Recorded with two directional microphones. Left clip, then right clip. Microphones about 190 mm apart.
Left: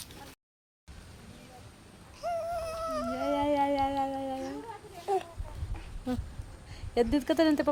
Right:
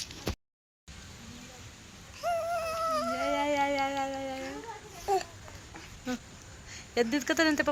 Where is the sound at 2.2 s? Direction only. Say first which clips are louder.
Right 2 dB; 5° right (ahead or behind).